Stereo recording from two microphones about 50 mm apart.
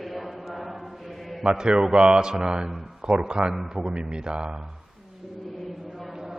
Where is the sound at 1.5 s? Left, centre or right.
Centre.